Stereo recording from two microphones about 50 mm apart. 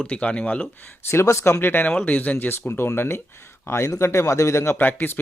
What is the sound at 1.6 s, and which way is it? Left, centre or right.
Speech, left.